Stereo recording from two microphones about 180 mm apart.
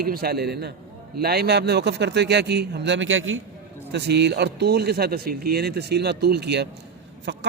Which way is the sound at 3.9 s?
70° right (ahead or behind).